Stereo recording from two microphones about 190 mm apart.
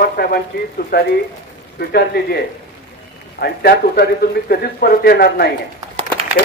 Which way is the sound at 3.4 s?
55° left (ahead or behind).